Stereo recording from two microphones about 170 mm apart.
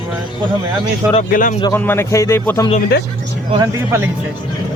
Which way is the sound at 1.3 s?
50° left (ahead or behind).